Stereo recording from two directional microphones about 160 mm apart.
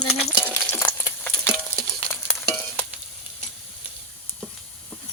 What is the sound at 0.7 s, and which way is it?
Stir, 10° left (ahead or behind).